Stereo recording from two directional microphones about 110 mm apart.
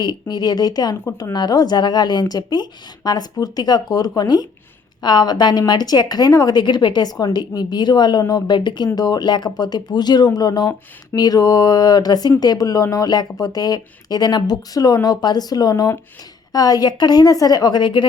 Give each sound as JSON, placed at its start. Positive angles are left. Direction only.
{"t": 0.0, "sound": "speech", "side_deg": 40}